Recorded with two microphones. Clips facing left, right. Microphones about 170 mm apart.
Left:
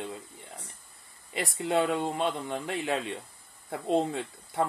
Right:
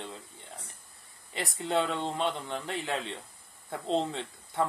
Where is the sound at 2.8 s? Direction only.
20° left (ahead or behind).